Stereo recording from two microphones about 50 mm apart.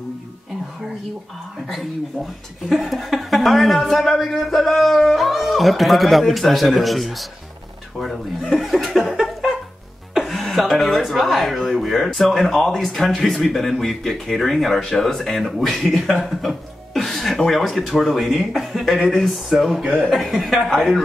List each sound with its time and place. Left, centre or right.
2.7 s speech: centre
8.5 s laughter: centre
10.1 s music: centre
10.4 s speech: centre
16.4 s chuckle: centre
17.5 s speech: centre
19.8 s speech: centre
20.1 s speech: centre